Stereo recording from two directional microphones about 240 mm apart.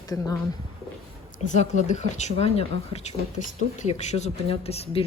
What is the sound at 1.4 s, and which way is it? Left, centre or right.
Speech, left.